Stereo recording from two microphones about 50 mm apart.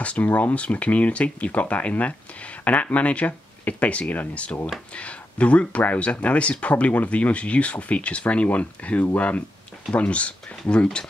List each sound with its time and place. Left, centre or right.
0.0 s speech: left